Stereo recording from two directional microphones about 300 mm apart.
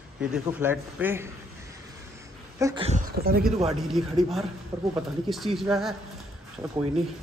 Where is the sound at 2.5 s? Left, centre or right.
Centre.